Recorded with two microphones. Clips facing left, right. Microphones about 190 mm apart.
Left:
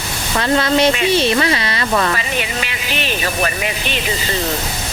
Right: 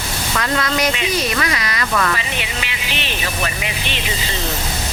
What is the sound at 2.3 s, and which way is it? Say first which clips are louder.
Speech: left 4 dB; 45° left (ahead or behind).